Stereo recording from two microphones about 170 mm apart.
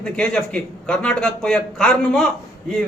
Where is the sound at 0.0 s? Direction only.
5° left (ahead or behind).